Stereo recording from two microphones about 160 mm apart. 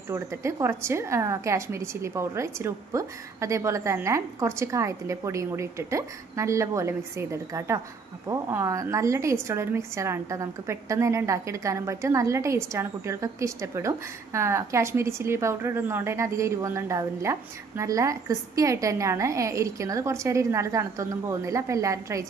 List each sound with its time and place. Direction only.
0.1 s a woman's voice: 15° right (ahead or behind)